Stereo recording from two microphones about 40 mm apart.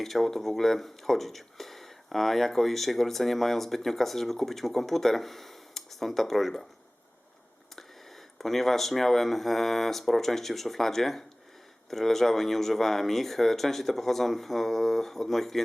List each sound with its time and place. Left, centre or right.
0.0 s speech: centre
7.8 s speech: centre